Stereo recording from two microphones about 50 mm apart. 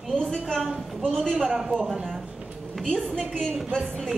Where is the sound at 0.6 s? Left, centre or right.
Centre.